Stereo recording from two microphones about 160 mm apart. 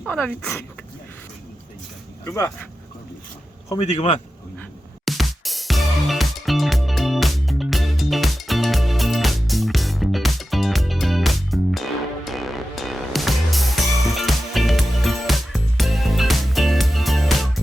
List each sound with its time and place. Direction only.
0.1 s speech: 10° left (ahead or behind)
3.8 s a man's voice: 40° left (ahead or behind)
5.0 s music: centre (ahead or behind)